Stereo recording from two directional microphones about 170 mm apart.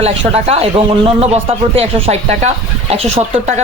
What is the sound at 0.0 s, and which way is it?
Speech, 35° right (ahead or behind).